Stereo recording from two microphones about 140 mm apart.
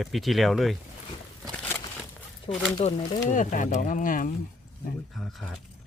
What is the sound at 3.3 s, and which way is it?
Speech, 65° left (ahead or behind).